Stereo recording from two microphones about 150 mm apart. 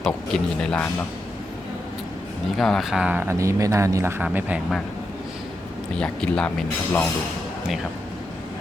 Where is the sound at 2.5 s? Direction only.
Centre (ahead or behind).